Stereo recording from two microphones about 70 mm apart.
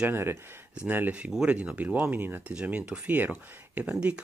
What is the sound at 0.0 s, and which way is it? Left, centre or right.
Speech, right.